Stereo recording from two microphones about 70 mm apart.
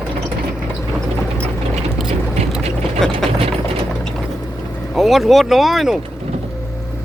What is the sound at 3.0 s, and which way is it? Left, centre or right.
Ratchet, centre.